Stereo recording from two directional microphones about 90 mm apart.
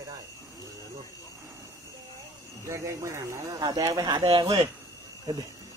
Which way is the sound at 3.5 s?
50° right (ahead or behind).